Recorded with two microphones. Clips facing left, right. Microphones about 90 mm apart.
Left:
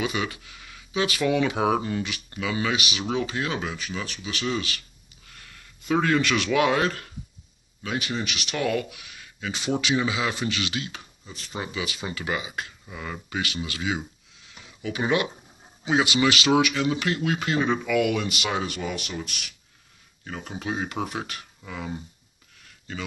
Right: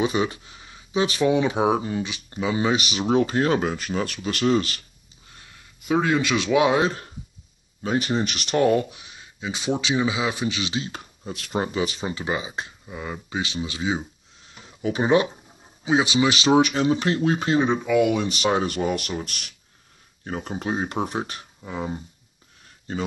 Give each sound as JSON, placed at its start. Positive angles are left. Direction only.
{"t": 0.0, "sound": "speech", "side_deg": -30}
{"t": 5.2, "sound": "speech", "side_deg": -20}
{"t": 7.8, "sound": "speech", "side_deg": -35}
{"t": 11.2, "sound": "speech", "side_deg": -60}
{"t": 11.5, "sound": "speech", "side_deg": -40}
{"t": 14.4, "sound": "a sound", "side_deg": -40}
{"t": 15.8, "sound": "speech", "side_deg": -20}
{"t": 18.4, "sound": "speech", "side_deg": -40}
{"t": 22.6, "sound": "a sound", "side_deg": -35}